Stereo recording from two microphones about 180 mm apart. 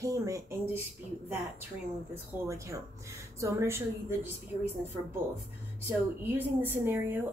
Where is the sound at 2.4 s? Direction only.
15° right (ahead or behind).